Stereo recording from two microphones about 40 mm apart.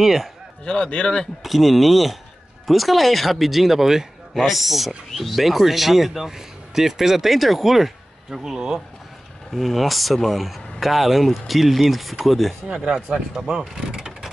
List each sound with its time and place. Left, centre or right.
0.0 s speech: centre
0.7 s a man's voice: left
1.4 s speech: centre
9.5 s speech: centre
12.9 s speech: centre